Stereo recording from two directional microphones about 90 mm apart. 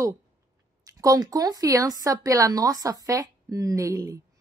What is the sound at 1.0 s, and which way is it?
A woman's voice, 40° right (ahead or behind).